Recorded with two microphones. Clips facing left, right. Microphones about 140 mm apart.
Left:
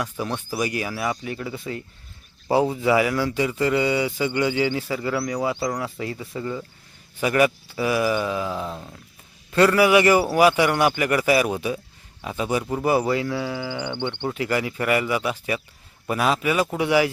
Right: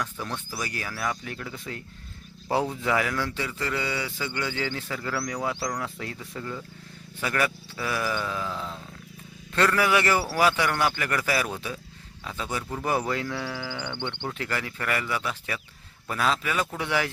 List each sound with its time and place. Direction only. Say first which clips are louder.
0.0 s speech: left 5 dB; 15° left (ahead or behind)